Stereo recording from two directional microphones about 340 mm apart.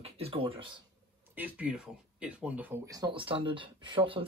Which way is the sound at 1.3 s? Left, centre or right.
Centre.